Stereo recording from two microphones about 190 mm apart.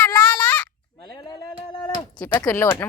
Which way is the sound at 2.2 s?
10° left (ahead or behind).